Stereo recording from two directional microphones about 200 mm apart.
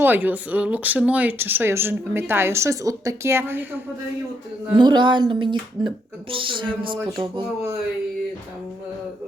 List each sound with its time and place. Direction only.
0.0 s speech: 10° right (ahead or behind)
4.8 s speech: 25° right (ahead or behind)